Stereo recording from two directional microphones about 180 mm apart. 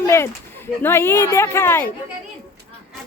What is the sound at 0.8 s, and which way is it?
Speech, 15° left (ahead or behind).